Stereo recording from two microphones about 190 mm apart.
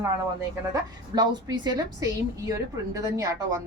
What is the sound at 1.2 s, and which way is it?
A woman's voice, 20° right (ahead or behind).